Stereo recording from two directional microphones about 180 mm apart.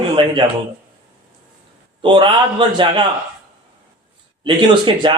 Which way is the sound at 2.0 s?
25° right (ahead or behind).